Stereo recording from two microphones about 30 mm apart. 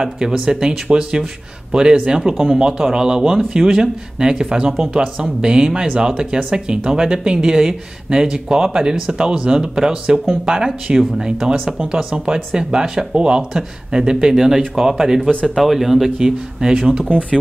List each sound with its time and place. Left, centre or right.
0.0 s speech: right
13.1 s speech: right
13.4 s speech: right
16.2 s speech: right